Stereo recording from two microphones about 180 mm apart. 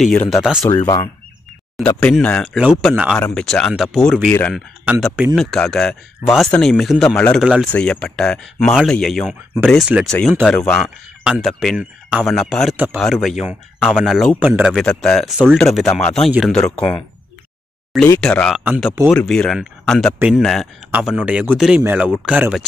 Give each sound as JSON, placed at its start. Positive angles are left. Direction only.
{"t": 0.0, "sound": "speech", "side_deg": 5}
{"t": 0.7, "sound": "speech", "side_deg": 20}
{"t": 1.9, "sound": "speech", "side_deg": 5}
{"t": 4.3, "sound": "speech", "side_deg": 10}
{"t": 5.0, "sound": "speech", "side_deg": -5}
{"t": 12.7, "sound": "speech", "side_deg": -10}
{"t": 13.0, "sound": "speech", "side_deg": 0}
{"t": 18.0, "sound": "speech", "side_deg": 10}